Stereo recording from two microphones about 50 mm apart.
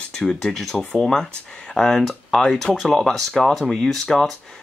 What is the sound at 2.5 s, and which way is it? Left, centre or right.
Speech, centre.